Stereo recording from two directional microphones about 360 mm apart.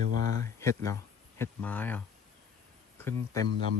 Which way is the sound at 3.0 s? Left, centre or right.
Centre.